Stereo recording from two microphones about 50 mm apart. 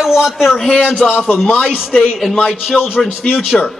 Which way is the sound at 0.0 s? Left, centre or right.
Centre.